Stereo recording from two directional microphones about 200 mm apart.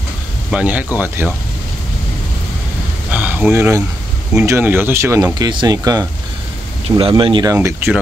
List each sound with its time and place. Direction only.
0.5 s speech: 5° right (ahead or behind)
3.1 s a sound: 5° right (ahead or behind)
4.3 s speech: 10° right (ahead or behind); by 7.5 s 25° right (ahead or behind)
7.5 s speech: 10° right (ahead or behind)